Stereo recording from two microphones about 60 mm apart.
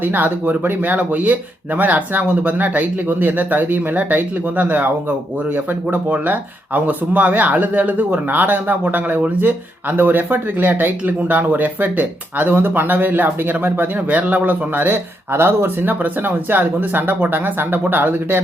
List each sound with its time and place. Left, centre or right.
0.0 s speech: right